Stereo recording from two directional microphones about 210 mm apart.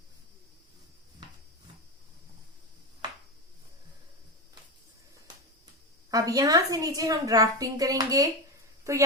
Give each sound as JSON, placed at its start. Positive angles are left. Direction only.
{"t": 6.1, "sound": "a woman's voice", "side_deg": -15}